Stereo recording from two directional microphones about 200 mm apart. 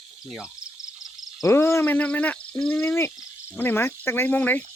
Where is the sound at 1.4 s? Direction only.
15° left (ahead or behind).